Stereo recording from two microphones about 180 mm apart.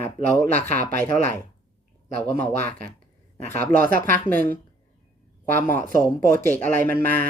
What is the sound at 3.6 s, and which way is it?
Speech, 55° right (ahead or behind).